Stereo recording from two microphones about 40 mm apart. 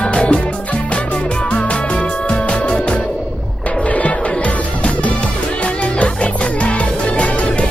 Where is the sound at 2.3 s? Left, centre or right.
Left.